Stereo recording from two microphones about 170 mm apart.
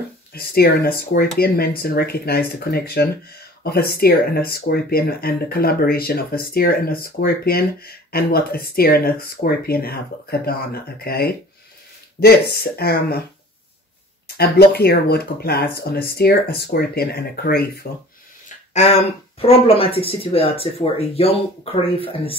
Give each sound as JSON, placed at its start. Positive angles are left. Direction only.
{"t": 0.3, "sound": "speech", "side_deg": 65}
{"t": 14.2, "sound": "speech", "side_deg": 70}
{"t": 18.7, "sound": "speech", "side_deg": 40}